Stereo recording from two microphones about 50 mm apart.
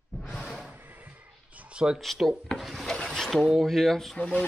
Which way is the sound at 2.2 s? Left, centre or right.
Centre.